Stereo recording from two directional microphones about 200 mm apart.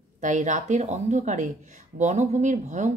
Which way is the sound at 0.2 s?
40° right (ahead or behind).